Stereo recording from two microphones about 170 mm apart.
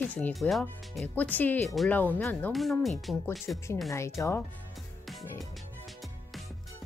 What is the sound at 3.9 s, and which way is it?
Speech, 15° left (ahead or behind).